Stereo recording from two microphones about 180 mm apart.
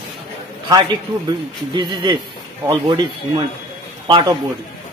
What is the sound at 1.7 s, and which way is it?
A man's voice, 25° right (ahead or behind).